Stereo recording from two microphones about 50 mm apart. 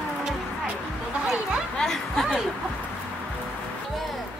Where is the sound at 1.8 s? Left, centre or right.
Centre.